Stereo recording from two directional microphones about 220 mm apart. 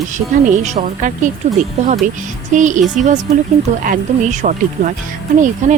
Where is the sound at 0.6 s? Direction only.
35° right (ahead or behind).